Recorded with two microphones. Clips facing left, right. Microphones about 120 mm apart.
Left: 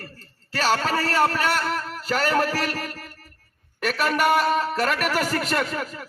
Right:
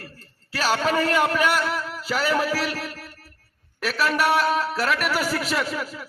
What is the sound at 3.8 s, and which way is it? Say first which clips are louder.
A man's voice: left 1 dB; centre (ahead or behind).